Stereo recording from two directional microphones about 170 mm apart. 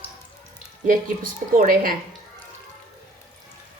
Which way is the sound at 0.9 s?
55° right (ahead or behind).